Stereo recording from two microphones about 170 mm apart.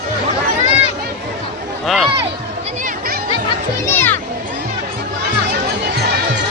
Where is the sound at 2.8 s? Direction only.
60° right (ahead or behind).